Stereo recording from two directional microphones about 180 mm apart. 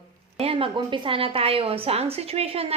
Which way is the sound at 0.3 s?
30° right (ahead or behind).